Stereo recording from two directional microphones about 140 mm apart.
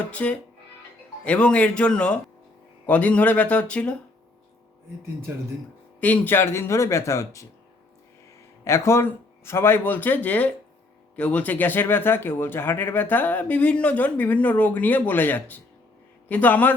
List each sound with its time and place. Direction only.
0.1 s speech: 10° left (ahead or behind)
6.0 s speech: 10° left (ahead or behind)
8.6 s speech: 20° left (ahead or behind)